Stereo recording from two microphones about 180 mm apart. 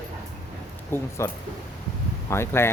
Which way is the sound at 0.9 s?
10° left (ahead or behind).